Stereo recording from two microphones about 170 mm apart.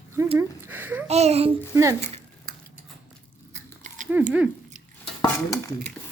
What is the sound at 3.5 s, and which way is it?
Chewing, 45° right (ahead or behind).